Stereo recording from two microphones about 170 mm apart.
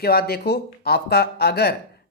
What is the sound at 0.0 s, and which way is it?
Speech, 65° left (ahead or behind).